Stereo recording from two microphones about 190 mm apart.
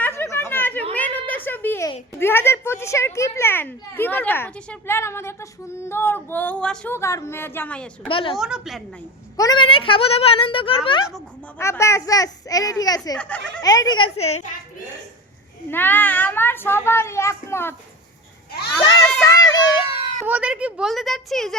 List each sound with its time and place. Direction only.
0.0 s chatter: 15° left (ahead or behind)
0.9 s a sound: 10° left (ahead or behind)
2.1 s a child's voice: 10° left (ahead or behind)
8.0 s a child's voice: 25° left (ahead or behind)
8.4 s a woman's voice: 5° right (ahead or behind)
9.4 s a child's voice: 25° left (ahead or behind)
11.5 s a child's voice: 15° left (ahead or behind)
13.1 s a child's voice: 5° left (ahead or behind)
13.6 s a child's voice: 20° left (ahead or behind)
15.7 s a child's voice: 10° left (ahead or behind)
18.8 s children playing: 20° left (ahead or behind)
20.2 s a woman's voice: 5° right (ahead or behind)